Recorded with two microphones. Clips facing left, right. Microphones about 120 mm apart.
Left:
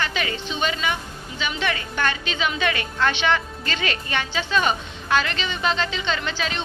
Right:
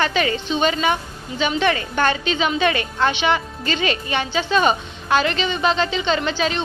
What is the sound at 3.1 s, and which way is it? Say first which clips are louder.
A woman's voice: right 2 dB; 15° right (ahead or behind).